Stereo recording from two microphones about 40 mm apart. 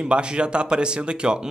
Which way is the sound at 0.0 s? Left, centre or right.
Right.